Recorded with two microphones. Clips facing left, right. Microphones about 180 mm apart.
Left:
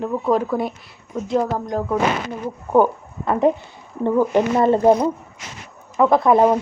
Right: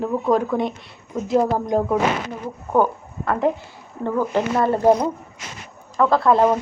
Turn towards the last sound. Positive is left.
turn(degrees=15)  # may be behind; listen again after turning